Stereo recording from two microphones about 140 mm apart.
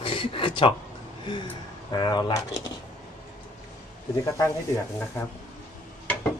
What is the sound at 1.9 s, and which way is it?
Speech, 30° left (ahead or behind).